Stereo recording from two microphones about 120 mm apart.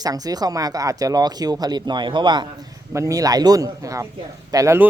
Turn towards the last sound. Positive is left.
turn(degrees=-25)  # may be behind; listen again after turning